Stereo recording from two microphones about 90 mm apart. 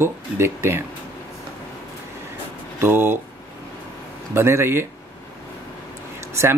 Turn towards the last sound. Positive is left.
turn(degrees=-30)  # may be behind; listen again after turning